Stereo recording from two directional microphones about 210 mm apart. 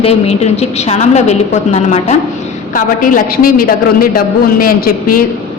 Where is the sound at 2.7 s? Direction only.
40° left (ahead or behind).